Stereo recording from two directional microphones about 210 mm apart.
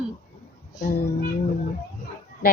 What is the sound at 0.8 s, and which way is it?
Speech, 40° left (ahead or behind).